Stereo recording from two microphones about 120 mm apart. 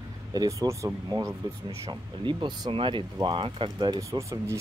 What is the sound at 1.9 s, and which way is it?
Speech, 40° right (ahead or behind).